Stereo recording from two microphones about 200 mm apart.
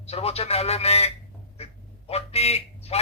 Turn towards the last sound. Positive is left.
turn(degrees=30)  # may be behind; listen again after turning